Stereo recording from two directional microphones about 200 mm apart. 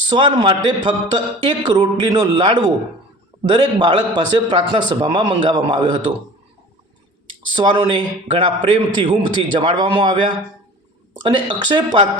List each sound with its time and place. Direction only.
0.1 s a man's voice: 25° right (ahead or behind)
7.5 s a man's voice: 25° right (ahead or behind)